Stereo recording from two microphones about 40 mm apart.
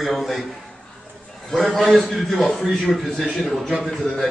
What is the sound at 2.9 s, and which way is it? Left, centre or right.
Speech, centre.